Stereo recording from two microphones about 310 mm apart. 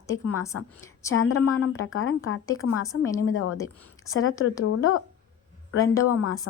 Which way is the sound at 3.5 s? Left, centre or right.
Centre.